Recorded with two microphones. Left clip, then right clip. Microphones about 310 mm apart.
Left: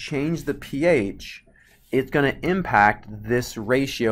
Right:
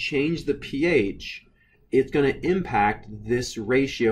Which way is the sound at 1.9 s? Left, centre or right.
Centre.